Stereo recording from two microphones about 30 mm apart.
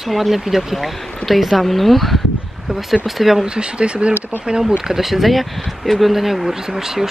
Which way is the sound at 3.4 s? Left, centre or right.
Right.